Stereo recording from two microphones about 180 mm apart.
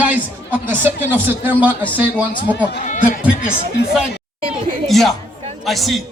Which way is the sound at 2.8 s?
45° left (ahead or behind).